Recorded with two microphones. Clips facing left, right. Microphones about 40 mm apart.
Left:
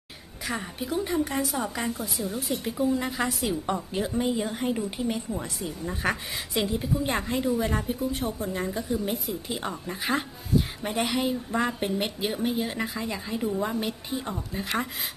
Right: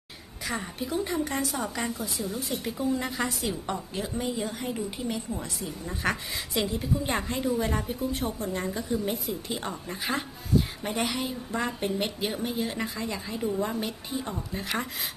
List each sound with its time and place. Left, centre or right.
0.5 s a woman's voice: centre
4.5 s a woman's voice: left; by 14.9 s centre